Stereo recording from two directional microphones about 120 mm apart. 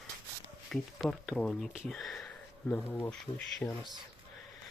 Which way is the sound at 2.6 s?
15° left (ahead or behind).